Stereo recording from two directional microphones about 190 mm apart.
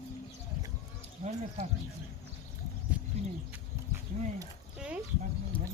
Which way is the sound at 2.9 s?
5° right (ahead or behind).